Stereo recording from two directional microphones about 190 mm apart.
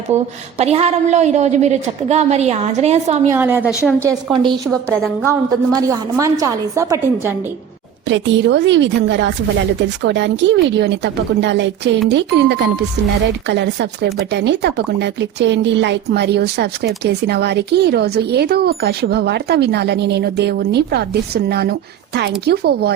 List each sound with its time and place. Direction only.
0.1 s a woman's voice: 10° right (ahead or behind)
0.6 s a woman's voice: 35° right (ahead or behind)
3.2 s a woman's voice: 10° right (ahead or behind)
4.0 s a woman's voice: 20° right (ahead or behind)
4.7 s a woman's voice: 5° left (ahead or behind)
5.7 s a woman's voice: 15° right (ahead or behind)
8.0 s a woman's voice: 70° right (ahead or behind)